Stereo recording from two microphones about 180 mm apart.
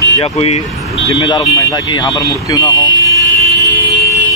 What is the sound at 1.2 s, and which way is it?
Speech, 20° left (ahead or behind).